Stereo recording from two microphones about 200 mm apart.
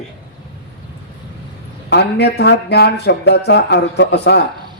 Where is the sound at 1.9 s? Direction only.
55° left (ahead or behind).